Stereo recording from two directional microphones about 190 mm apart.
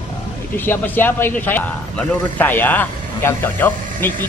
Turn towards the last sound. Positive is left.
turn(degrees=10)  # may be behind; listen again after turning